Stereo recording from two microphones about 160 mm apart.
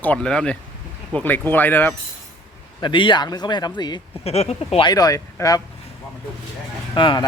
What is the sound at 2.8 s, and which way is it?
Speech, 30° left (ahead or behind).